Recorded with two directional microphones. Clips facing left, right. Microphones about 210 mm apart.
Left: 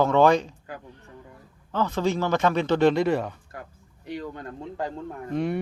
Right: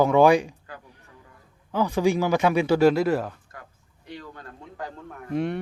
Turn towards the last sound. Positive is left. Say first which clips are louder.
# even
turn(degrees=0)  # may be behind; listen again after turning